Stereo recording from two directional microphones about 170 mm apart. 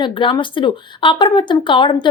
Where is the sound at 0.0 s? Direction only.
30° left (ahead or behind).